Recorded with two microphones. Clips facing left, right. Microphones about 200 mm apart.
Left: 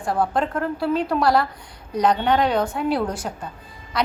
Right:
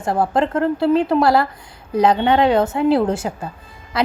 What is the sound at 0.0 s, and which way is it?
A woman's voice, 25° right (ahead or behind).